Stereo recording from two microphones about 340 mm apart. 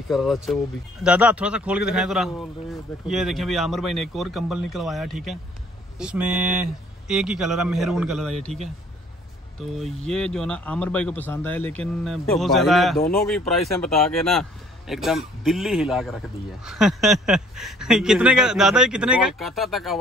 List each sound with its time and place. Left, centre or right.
0.1 s speech: centre
9.6 s speech: centre